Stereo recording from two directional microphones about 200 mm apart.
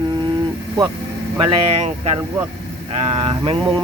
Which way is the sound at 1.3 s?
25° right (ahead or behind).